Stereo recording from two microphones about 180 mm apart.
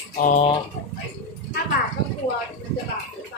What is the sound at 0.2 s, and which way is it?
Speech, 45° left (ahead or behind).